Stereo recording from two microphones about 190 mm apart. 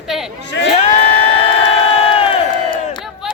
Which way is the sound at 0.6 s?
70° left (ahead or behind).